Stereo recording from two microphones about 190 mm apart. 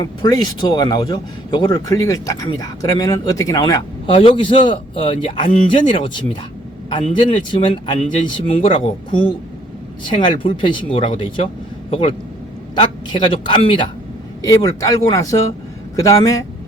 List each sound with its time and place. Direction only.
0.0 s speech: 20° left (ahead or behind)
7.3 s a man's voice: 25° left (ahead or behind)